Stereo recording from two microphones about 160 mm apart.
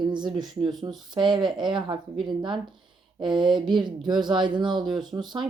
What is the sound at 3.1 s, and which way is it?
A woman's voice, 30° right (ahead or behind).